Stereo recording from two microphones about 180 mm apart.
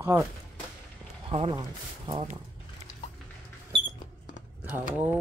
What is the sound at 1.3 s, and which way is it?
Speech, 25° right (ahead or behind).